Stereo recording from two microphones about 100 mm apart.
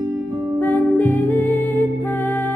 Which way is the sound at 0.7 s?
15° left (ahead or behind).